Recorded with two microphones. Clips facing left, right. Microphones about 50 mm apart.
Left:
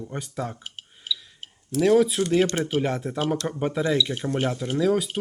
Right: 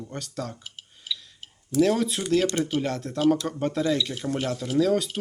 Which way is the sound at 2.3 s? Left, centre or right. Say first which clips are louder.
Right 2 dB; left.